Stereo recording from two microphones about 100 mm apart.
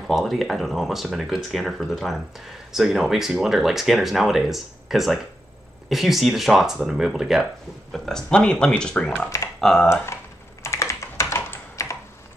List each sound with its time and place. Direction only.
0.0 s speech: centre (ahead or behind)
10.6 s computer keyboard: 30° left (ahead or behind)